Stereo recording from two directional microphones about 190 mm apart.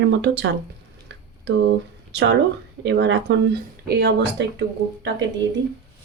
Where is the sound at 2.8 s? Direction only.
70° right (ahead or behind).